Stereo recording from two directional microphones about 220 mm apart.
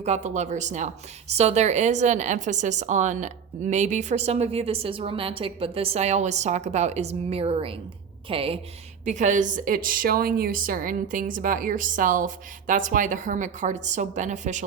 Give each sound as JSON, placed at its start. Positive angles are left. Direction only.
{"t": 0.0, "sound": "a woman's voice", "side_deg": -30}